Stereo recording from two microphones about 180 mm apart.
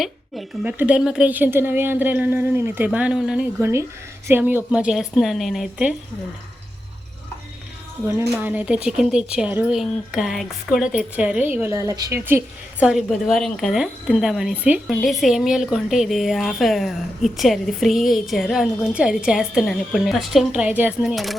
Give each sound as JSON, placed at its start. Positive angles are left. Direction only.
{"t": 0.0, "sound": "a woman's voice", "side_deg": -5}
{"t": 8.4, "sound": "a woman's voice", "side_deg": -5}
{"t": 12.8, "sound": "a woman's voice", "side_deg": 0}